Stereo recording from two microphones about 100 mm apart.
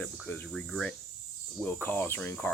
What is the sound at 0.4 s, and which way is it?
Cricket, 5° left (ahead or behind).